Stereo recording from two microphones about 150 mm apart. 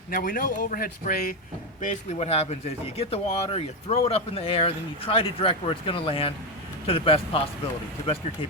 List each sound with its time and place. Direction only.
0.1 s a man's voice: 70° left (ahead or behind)
2.1 s speech: 45° left (ahead or behind)